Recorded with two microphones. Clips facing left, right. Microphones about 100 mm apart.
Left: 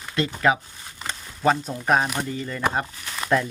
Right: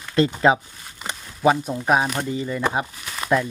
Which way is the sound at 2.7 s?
10° right (ahead or behind).